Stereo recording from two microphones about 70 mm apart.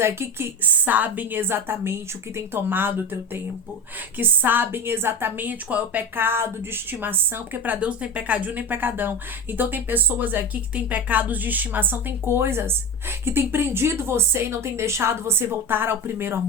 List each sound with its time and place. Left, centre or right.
0.0 s a woman's voice: right